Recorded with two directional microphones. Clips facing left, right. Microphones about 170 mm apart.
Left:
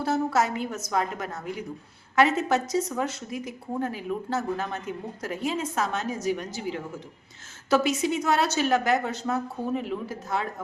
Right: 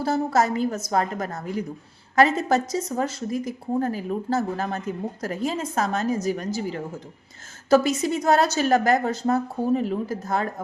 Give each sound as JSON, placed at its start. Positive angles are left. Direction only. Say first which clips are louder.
{"t": 0.0, "sound": "speech", "louder": "right 3 dB", "side_deg": -40}